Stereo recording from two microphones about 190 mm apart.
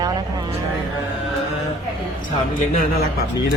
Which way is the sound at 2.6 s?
50° left (ahead or behind).